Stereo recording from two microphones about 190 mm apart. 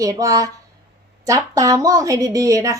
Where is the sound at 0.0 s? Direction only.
15° right (ahead or behind).